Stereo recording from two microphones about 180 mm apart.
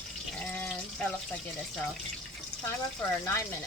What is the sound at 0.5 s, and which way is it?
Water tap, 10° left (ahead or behind).